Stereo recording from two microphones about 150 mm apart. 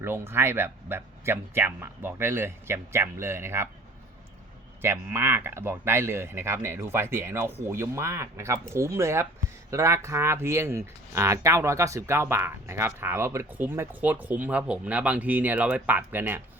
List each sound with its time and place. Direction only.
0.0 s speech: 15° right (ahead or behind)
4.8 s speech: 15° right (ahead or behind)